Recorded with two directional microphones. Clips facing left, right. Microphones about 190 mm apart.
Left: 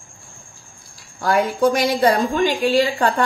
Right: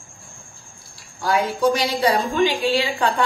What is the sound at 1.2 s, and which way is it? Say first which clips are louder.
A woman's voice: left 2 dB; 55° left (ahead or behind).